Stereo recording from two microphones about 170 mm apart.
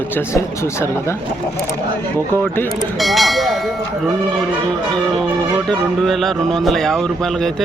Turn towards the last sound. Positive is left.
turn(degrees=0)  # may be behind; listen again after turning